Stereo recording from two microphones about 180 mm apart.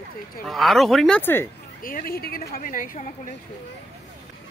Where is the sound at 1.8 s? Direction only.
55° left (ahead or behind).